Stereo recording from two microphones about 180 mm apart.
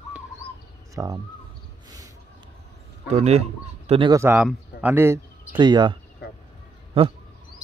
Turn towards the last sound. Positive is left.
turn(degrees=-30)  # may be behind; listen again after turning